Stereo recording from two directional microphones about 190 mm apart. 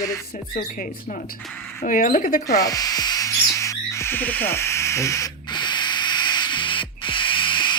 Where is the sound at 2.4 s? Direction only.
20° left (ahead or behind).